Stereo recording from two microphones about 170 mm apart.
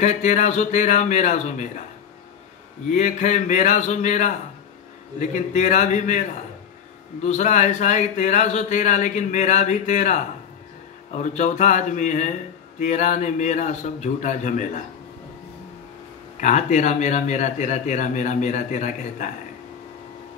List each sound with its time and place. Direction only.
0.0 s a man's voice: 45° left (ahead or behind)
2.9 s a man's voice: 45° left (ahead or behind)
16.3 s a man's voice: 45° left (ahead or behind)